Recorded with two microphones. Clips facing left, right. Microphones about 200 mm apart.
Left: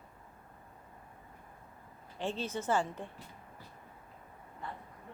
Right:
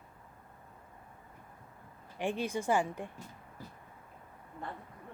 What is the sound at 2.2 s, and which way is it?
Speech, 15° right (ahead or behind).